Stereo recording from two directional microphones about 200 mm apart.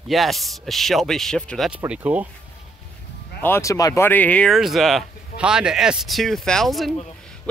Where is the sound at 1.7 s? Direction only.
5° right (ahead or behind).